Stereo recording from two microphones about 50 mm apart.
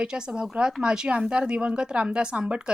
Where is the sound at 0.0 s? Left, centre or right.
Centre.